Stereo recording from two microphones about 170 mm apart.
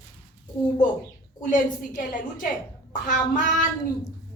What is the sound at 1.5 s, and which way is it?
A woman's voice, 50° left (ahead or behind).